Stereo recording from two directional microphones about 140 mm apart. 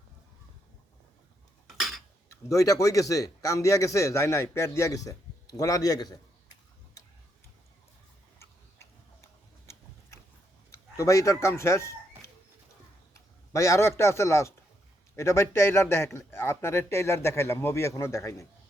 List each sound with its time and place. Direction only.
1.6 s cutlery: centre (ahead or behind)
2.3 s a man's voice: 25° left (ahead or behind)
10.7 s a man's voice: 20° left (ahead or behind)